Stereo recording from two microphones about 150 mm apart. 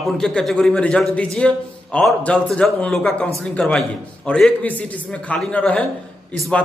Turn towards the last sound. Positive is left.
turn(degrees=10)  # may be behind; listen again after turning